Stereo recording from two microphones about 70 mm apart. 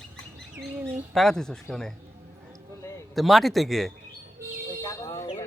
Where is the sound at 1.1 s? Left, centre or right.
Centre.